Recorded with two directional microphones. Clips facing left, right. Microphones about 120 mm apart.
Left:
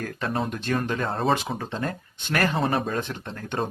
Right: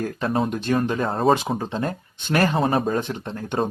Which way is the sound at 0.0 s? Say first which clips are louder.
Right 5 dB; 20° right (ahead or behind).